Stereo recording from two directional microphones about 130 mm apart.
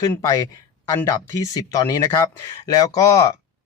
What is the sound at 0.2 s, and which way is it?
Speech, 25° left (ahead or behind).